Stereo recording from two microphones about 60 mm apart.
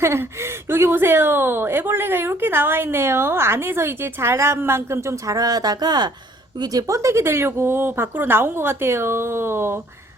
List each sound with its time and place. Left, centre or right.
0.0 s a woman's voice: right
5.2 s speech: right
6.7 s a woman's voice: right